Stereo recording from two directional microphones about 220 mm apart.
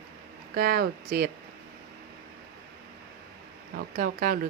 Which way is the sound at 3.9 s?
40° right (ahead or behind).